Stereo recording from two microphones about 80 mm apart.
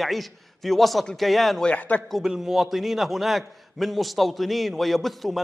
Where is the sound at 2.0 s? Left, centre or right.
Centre.